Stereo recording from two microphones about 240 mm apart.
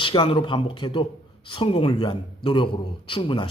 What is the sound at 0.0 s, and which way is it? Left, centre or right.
Speech, left.